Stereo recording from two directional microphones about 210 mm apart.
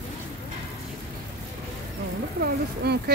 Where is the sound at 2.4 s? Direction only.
50° right (ahead or behind).